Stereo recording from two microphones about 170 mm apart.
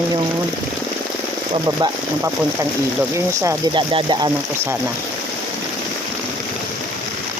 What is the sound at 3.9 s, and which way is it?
Speech, 30° right (ahead or behind).